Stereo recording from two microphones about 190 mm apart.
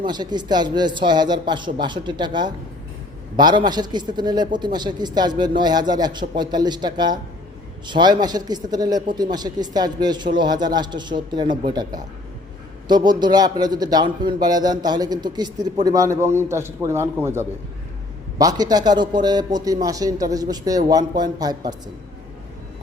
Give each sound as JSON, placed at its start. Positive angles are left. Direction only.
{"t": 0.0, "sound": "a man's voice", "side_deg": -25}
{"t": 12.9, "sound": "a man's voice", "side_deg": -25}